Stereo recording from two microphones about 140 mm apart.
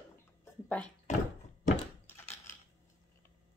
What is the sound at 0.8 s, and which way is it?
Speech, 10° left (ahead or behind).